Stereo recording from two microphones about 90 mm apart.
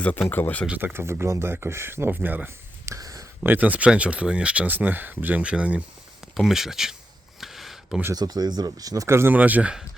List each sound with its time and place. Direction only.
0.0 s speech: 15° left (ahead or behind)
0.9 s speech: 25° right (ahead or behind)
2.8 s a sound: 40° right (ahead or behind)
3.4 s speech: 20° right (ahead or behind)
6.3 s speech: 5° right (ahead or behind)
7.4 s a sound: centre (ahead or behind)
8.1 s speech: 45° right (ahead or behind)
9.0 s speech: 30° right (ahead or behind)
9.3 s speech: 15° right (ahead or behind)